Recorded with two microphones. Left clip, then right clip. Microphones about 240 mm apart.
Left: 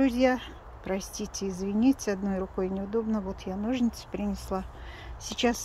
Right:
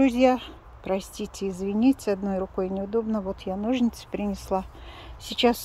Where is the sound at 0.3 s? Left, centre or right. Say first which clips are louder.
Right 5 dB; centre.